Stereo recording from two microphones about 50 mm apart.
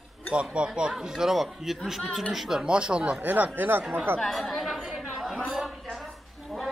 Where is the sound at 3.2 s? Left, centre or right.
Right.